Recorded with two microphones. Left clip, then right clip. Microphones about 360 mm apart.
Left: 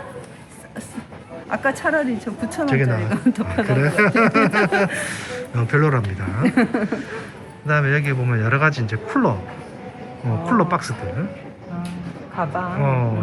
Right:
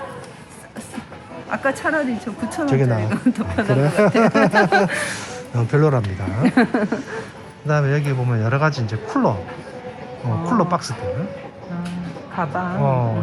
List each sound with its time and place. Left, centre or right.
1.5 s a woman's voice: centre
6.4 s speech: right
7.7 s speech: centre
10.4 s a woman's voice: centre
12.8 s speech: centre